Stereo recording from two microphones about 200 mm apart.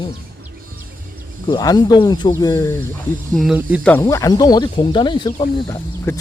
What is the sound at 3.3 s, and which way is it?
Speech, 5° right (ahead or behind).